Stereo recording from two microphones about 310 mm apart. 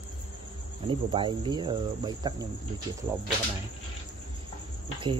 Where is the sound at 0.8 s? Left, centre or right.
Centre.